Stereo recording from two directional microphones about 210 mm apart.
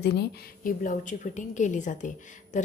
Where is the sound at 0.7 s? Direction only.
40° left (ahead or behind).